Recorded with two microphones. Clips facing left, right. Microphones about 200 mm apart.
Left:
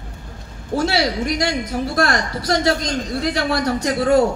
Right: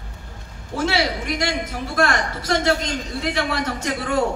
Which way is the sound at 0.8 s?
35° left (ahead or behind).